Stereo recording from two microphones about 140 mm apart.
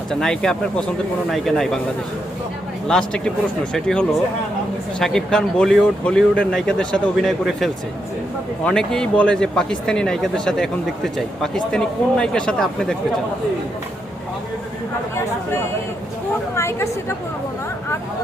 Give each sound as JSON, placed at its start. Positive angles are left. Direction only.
{"t": 0.1, "sound": "speech", "side_deg": 5}
{"t": 2.8, "sound": "speech", "side_deg": 5}
{"t": 16.6, "sound": "speech", "side_deg": 20}